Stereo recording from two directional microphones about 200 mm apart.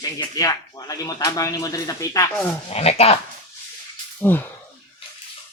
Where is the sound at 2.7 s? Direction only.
30° left (ahead or behind).